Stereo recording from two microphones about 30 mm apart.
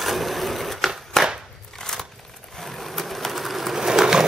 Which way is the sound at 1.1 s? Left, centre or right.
Centre.